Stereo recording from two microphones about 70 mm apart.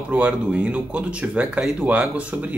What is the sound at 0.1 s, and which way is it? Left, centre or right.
Speech, centre.